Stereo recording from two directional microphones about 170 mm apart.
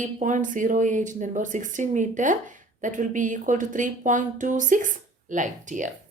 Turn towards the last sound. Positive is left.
turn(degrees=-45)  # may be behind; listen again after turning